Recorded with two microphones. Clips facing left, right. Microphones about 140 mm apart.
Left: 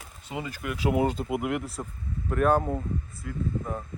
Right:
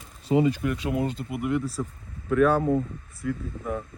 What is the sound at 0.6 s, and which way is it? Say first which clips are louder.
Speech: right 5 dB; 5° left (ahead or behind).